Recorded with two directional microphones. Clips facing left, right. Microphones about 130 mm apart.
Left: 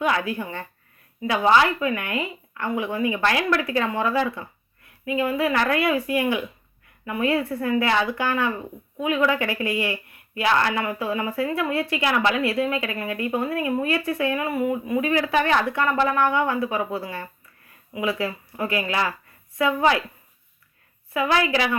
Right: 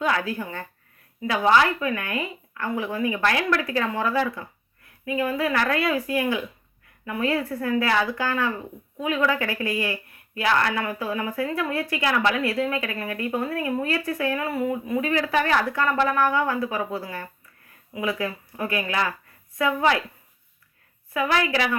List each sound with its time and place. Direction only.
0.0 s speech: 20° left (ahead or behind)
21.1 s speech: 25° left (ahead or behind)